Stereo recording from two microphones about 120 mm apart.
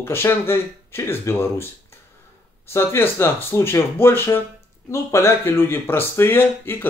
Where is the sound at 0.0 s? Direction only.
20° left (ahead or behind).